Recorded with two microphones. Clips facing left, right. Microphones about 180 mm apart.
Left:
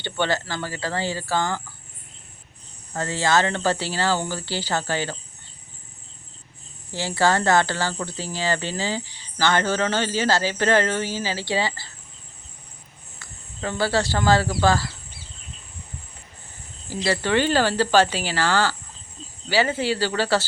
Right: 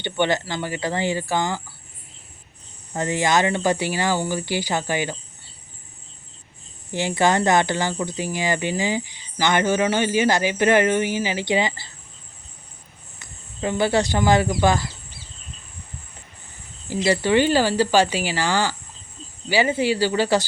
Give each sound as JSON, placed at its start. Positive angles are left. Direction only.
{"t": 0.0, "sound": "speech", "side_deg": -15}
{"t": 2.9, "sound": "speech", "side_deg": -15}
{"t": 6.9, "sound": "speech", "side_deg": -20}
{"t": 13.1, "sound": "speech", "side_deg": -20}
{"t": 16.9, "sound": "speech", "side_deg": -15}